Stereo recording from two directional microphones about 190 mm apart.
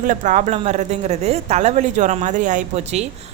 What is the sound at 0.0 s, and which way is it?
Speech, 40° right (ahead or behind).